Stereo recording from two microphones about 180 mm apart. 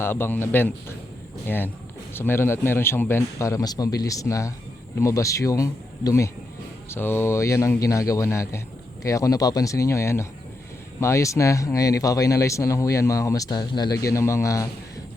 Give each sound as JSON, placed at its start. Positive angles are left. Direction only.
{"t": 0.0, "sound": "speech", "side_deg": 10}